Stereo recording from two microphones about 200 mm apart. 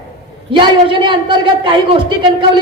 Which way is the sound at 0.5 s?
25° right (ahead or behind).